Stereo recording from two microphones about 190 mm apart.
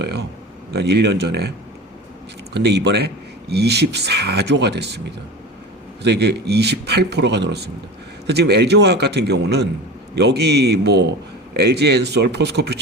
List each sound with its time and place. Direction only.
0.0 s a man's voice: 60° right (ahead or behind)
6.0 s a man's voice: 60° right (ahead or behind)